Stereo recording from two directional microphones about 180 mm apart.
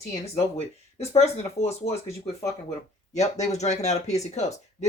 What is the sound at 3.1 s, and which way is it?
Speech, 40° left (ahead or behind).